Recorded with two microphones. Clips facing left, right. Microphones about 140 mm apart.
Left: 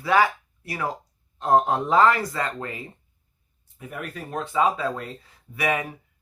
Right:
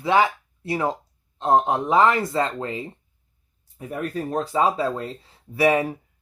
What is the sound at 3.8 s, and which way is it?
Speech, 35° right (ahead or behind).